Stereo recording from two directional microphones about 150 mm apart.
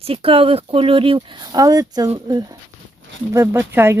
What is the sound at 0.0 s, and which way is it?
Speech, 40° right (ahead or behind).